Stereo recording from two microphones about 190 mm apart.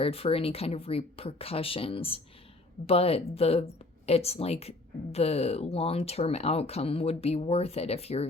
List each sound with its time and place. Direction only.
0.0 s speech: 30° left (ahead or behind)